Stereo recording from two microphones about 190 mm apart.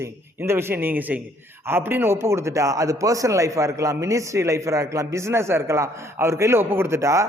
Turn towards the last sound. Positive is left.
turn(degrees=-15)  # may be behind; listen again after turning